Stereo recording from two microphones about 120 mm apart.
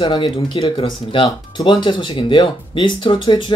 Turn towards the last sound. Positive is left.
turn(degrees=45)  # may be behind; listen again after turning